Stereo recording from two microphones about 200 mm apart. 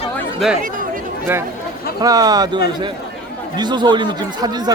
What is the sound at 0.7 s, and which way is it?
Speech, 45° right (ahead or behind).